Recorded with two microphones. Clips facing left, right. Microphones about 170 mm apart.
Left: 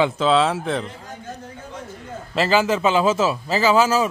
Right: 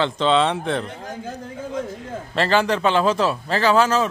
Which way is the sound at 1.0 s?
90° right.